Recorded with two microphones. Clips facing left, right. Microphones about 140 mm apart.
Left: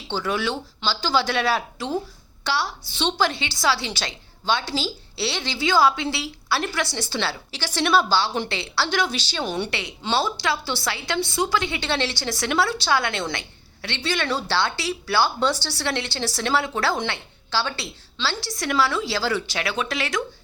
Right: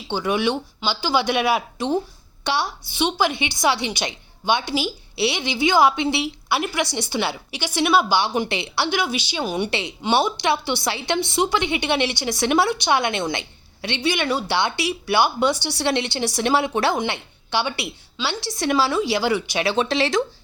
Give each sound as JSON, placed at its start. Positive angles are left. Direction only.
{"t": 0.1, "sound": "a woman's voice", "side_deg": -15}
{"t": 9.6, "sound": "speech", "side_deg": -20}
{"t": 19.6, "sound": "speech", "side_deg": -30}